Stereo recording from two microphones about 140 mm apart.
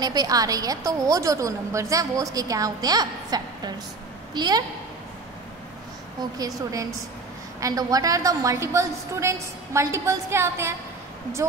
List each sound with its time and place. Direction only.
0.0 s a woman's voice: 30° right (ahead or behind)
6.3 s a woman's voice: 25° right (ahead or behind)